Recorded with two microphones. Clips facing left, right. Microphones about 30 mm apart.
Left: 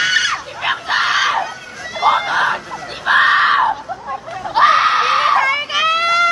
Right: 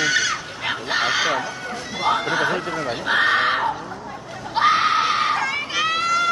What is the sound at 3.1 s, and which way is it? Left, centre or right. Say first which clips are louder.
Screaming: left 7 dB; left.